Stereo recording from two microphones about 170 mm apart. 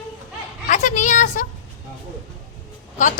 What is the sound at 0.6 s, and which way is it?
Speech, 45° left (ahead or behind).